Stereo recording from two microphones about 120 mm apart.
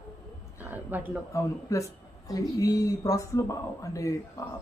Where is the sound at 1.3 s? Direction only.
25° left (ahead or behind).